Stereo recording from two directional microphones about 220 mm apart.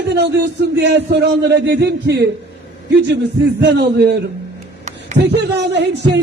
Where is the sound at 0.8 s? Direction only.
50° right (ahead or behind).